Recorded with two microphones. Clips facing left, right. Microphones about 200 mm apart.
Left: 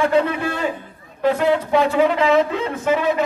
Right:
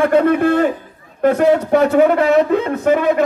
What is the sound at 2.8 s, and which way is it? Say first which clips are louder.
Speech: right 2 dB; 60° right (ahead or behind).